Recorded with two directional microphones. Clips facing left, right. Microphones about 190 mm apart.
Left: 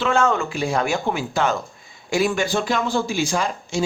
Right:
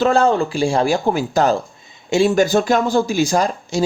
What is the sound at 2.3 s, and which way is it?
Speech, 45° right (ahead or behind).